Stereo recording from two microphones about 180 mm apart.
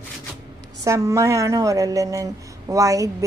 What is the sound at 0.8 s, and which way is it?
A woman's voice, 15° right (ahead or behind).